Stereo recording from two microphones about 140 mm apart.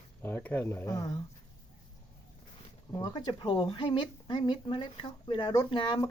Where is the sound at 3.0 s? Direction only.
30° left (ahead or behind).